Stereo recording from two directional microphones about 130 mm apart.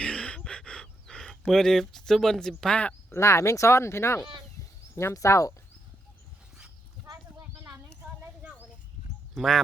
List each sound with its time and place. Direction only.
0.0 s gasp: 10° left (ahead or behind)
3.1 s speech: 20° left (ahead or behind)
7.1 s clip-clop: 30° right (ahead or behind)
9.3 s speech: centre (ahead or behind)